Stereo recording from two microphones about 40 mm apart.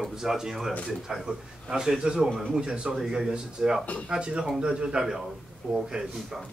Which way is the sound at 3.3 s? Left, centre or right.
Right.